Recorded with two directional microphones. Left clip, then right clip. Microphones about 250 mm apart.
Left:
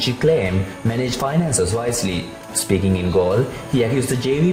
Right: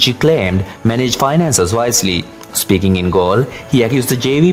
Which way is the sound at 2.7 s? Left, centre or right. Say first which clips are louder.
Right 6 dB; right.